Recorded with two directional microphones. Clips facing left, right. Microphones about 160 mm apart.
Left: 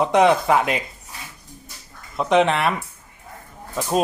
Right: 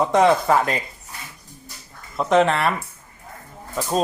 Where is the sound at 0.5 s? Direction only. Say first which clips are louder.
Even; 10° left (ahead or behind).